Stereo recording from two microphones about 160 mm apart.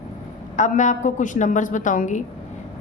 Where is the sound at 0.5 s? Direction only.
50° left (ahead or behind).